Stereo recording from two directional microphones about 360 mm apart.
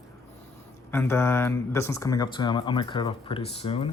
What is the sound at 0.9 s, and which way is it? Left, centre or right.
Speech, centre.